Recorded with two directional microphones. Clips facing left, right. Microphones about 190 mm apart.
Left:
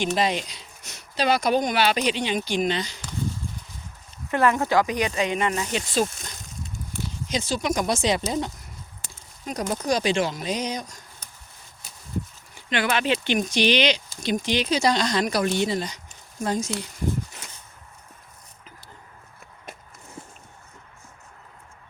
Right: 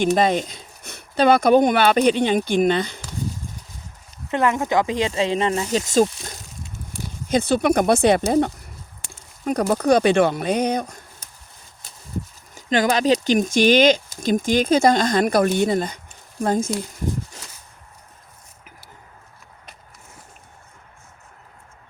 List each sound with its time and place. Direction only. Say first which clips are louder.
0.0 s speech: right 6 dB; 50° right (ahead or behind)
4.3 s speech: right 1 dB; 20° right (ahead or behind); by 6.1 s 45° right (ahead or behind)
7.3 s speech: right 8 dB; 55° right (ahead or behind)
12.5 s speech: right 5 dB; 40° right (ahead or behind)